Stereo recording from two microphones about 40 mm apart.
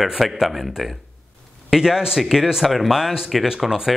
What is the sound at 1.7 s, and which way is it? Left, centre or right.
Speech, centre.